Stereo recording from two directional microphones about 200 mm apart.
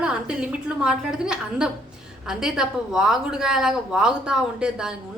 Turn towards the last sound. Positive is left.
turn(degrees=-5)  # may be behind; listen again after turning